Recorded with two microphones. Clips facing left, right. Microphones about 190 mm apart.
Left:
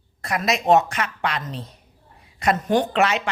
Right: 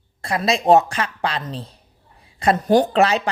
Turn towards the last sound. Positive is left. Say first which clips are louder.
# right 4 dB
turn(degrees=-35)  # may be behind; listen again after turning